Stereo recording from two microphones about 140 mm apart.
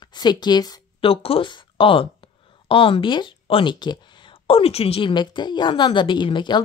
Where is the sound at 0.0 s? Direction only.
30° left (ahead or behind).